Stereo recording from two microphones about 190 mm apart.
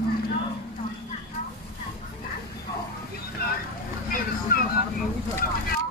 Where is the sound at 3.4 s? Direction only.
50° left (ahead or behind).